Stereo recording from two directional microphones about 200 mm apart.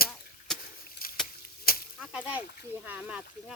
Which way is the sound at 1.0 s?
45° left (ahead or behind).